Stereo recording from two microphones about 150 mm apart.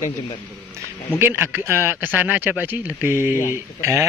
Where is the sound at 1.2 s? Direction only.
15° right (ahead or behind).